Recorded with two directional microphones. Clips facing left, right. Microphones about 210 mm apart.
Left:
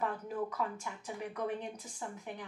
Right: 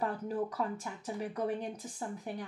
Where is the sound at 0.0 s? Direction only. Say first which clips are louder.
Right 2 dB; 35° right (ahead or behind).